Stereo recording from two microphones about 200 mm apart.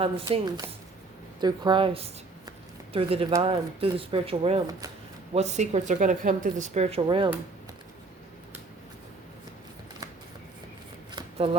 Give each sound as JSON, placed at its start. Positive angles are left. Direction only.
{"t": 0.0, "sound": "speech", "side_deg": -25}